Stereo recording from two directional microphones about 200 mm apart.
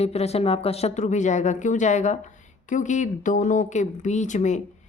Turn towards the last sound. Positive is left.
turn(degrees=35)  # may be behind; listen again after turning